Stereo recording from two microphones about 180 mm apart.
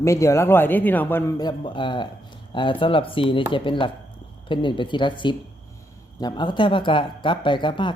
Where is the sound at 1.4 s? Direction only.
25° left (ahead or behind).